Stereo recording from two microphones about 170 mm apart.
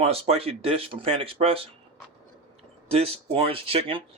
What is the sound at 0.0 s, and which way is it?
Speech, 35° right (ahead or behind).